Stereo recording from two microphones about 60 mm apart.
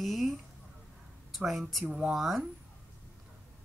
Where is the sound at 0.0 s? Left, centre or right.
Centre.